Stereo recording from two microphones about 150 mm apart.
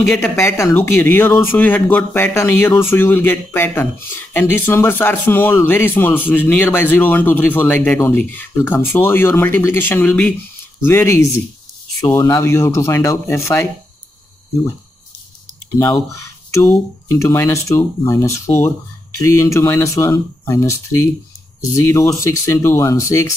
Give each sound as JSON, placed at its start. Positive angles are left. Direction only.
{"t": 0.2, "sound": "speech", "side_deg": 15}
{"t": 16.5, "sound": "speech", "side_deg": 15}